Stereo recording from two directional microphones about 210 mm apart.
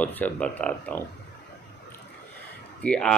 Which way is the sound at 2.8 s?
5° left (ahead or behind).